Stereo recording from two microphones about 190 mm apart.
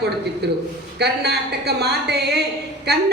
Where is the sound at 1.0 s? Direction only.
60° right (ahead or behind).